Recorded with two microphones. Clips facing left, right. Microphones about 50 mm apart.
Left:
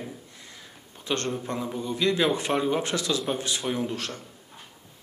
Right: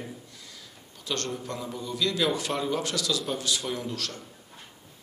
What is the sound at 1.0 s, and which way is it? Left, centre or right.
A man's voice, left.